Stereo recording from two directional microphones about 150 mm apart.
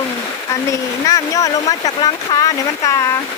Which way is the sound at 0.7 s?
20° left (ahead or behind).